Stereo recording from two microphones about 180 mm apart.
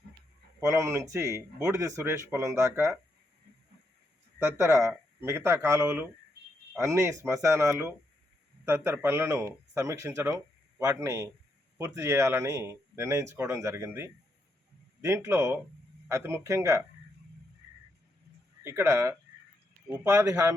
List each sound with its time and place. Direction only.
0.6 s speech: 15° right (ahead or behind)
4.5 s speech: 15° right (ahead or behind)
18.6 s speech: 15° right (ahead or behind)